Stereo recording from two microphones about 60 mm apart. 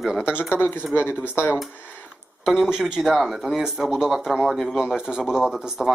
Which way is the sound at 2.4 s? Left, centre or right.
Centre.